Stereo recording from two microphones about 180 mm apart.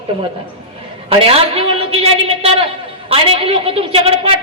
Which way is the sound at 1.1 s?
35° right (ahead or behind).